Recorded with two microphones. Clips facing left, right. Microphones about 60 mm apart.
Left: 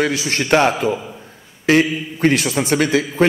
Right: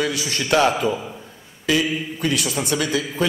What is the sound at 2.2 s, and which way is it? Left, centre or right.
Speech, left.